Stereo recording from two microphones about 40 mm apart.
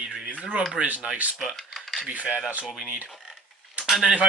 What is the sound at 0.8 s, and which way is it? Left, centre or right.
Speech, right.